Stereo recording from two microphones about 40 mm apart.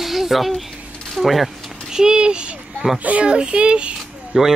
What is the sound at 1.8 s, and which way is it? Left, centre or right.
Speech, centre.